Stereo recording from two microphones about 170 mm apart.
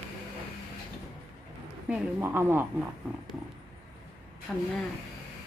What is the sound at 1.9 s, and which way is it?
Speech, 15° right (ahead or behind).